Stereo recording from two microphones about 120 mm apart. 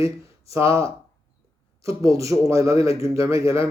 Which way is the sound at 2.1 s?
25° right (ahead or behind).